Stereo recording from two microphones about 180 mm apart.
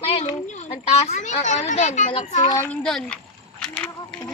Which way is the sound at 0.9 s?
40° left (ahead or behind).